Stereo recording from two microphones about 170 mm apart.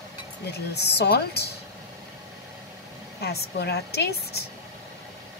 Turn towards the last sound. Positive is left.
turn(degrees=70)  # may be behind; listen again after turning